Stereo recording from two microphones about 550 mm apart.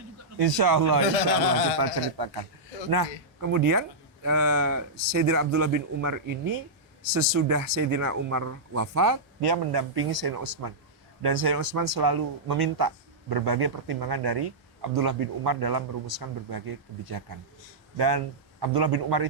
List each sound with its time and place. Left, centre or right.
0.3 s speech: right
1.3 s speech: left
2.1 s speech: right
3.5 s speech: right
9.5 s speech: right